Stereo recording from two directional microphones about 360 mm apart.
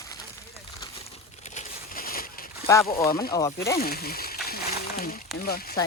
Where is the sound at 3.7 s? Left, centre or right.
Left.